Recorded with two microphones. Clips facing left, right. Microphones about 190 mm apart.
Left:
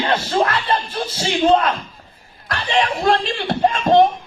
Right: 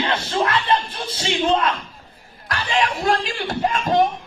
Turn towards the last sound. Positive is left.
turn(degrees=25)  # may be behind; listen again after turning